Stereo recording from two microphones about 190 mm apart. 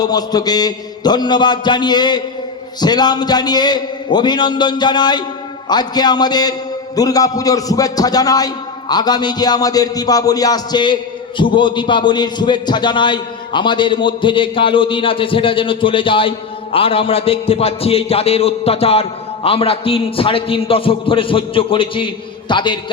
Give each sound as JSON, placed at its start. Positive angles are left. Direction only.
{"t": 0.0, "sound": "a man's voice", "side_deg": 20}